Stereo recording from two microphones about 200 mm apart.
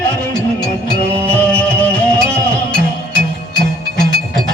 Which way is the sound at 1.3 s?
5° left (ahead or behind).